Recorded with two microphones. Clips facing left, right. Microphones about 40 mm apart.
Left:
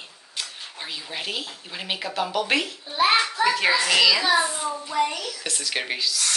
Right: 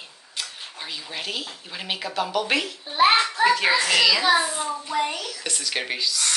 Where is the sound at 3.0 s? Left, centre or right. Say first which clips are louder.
Right 2 dB; right.